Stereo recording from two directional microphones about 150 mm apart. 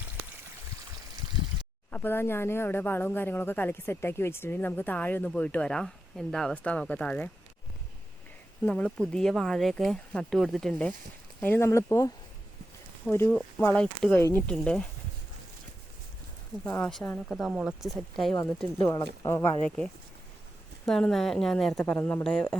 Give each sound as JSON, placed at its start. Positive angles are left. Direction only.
{"t": 1.9, "sound": "speech", "side_deg": 15}
{"t": 8.6, "sound": "speech", "side_deg": 10}
{"t": 14.4, "sound": "speech", "side_deg": 5}
{"t": 16.6, "sound": "speech", "side_deg": 10}
{"t": 17.2, "sound": "speech", "side_deg": 0}
{"t": 19.2, "sound": "speech", "side_deg": 20}
{"t": 19.6, "sound": "speech", "side_deg": 5}